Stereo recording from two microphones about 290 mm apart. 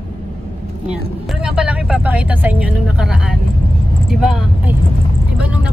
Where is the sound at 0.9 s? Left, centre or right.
Centre.